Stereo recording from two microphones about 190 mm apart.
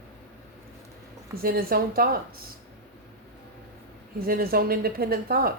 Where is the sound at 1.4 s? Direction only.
50° right (ahead or behind).